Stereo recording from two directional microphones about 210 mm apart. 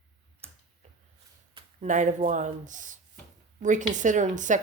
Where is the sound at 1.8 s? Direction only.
35° right (ahead or behind).